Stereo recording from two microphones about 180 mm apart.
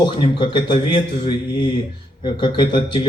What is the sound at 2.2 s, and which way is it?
Speech, 25° left (ahead or behind).